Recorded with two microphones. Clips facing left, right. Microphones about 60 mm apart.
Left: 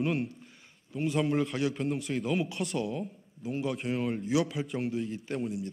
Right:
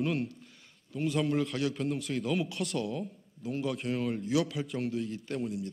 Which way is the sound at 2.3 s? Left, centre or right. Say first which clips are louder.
Left 1 dB; centre.